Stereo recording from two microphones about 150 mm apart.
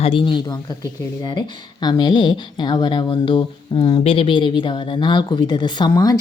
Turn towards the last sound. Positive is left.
turn(degrees=25)  # may be behind; listen again after turning